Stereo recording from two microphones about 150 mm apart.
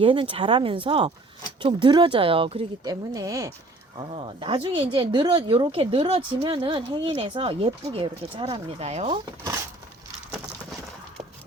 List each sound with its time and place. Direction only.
0.0 s speech: 35° right (ahead or behind)
2.8 s speech: 25° right (ahead or behind)
3.9 s speech: 35° right (ahead or behind)